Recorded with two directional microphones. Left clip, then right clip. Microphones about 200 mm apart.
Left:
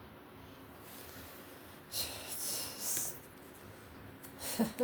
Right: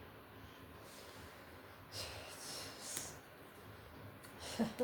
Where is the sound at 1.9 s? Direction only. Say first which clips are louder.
Left 6 dB; 50° left (ahead or behind).